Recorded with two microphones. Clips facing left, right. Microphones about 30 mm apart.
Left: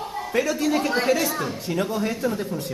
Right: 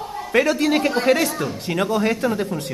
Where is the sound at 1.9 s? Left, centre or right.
Right.